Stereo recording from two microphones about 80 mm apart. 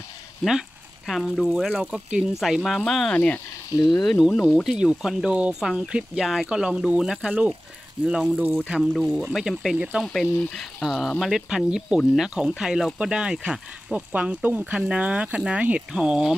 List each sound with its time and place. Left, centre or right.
0.5 s speech: centre
2.4 s speech: centre